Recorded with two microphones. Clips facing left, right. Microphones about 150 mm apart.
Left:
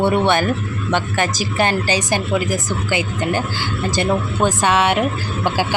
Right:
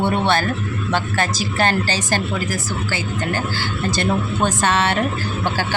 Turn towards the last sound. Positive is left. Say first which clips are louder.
# left 2 dB
turn(degrees=10)  # may be behind; listen again after turning